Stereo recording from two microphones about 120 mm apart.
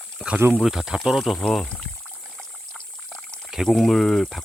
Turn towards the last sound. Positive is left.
turn(degrees=5)  # may be behind; listen again after turning